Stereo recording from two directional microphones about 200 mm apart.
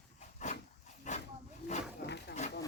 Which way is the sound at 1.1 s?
35° left (ahead or behind).